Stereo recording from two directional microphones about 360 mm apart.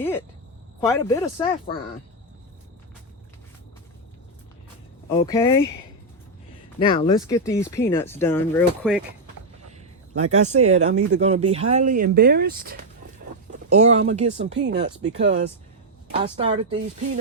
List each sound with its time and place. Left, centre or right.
0.8 s speech: centre
5.2 s speech: centre
6.7 s speech: centre
10.2 s speech: centre